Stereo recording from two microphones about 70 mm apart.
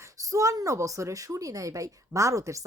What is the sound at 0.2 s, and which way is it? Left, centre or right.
A woman's voice, right.